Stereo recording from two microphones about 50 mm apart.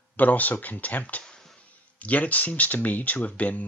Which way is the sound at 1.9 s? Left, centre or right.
Left.